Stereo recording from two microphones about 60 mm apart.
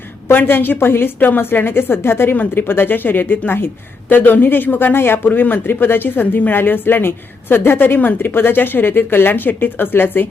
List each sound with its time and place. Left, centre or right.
0.3 s a woman's voice: left